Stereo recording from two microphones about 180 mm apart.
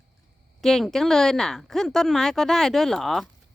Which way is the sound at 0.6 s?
Centre (ahead or behind).